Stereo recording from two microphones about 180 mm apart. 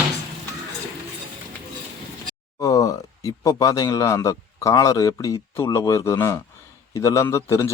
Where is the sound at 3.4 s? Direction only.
20° left (ahead or behind).